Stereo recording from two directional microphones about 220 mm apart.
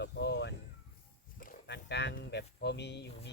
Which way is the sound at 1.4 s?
45° left (ahead or behind).